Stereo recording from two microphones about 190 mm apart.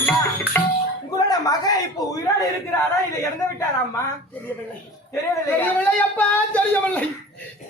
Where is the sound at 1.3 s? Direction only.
20° left (ahead or behind).